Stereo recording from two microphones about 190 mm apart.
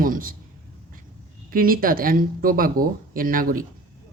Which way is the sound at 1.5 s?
50° right (ahead or behind).